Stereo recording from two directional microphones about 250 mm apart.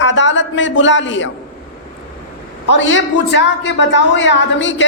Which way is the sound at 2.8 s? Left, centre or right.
Left.